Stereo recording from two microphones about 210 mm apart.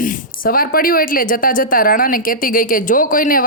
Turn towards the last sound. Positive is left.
turn(degrees=40)  # may be behind; listen again after turning